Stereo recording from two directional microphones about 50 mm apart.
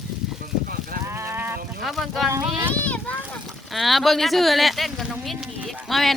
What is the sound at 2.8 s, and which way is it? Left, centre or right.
Speech, left.